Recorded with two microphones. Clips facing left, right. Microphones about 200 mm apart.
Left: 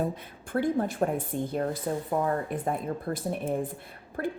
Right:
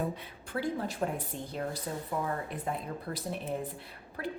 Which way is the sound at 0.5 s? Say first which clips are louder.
Left 7 dB; 50° left (ahead or behind).